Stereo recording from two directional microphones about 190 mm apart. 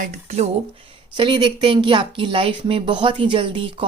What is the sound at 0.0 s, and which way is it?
Speech, 40° right (ahead or behind).